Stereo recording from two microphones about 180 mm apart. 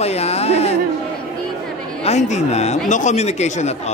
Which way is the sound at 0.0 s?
35° left (ahead or behind).